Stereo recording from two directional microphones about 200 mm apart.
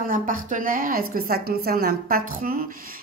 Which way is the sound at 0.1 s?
40° right (ahead or behind).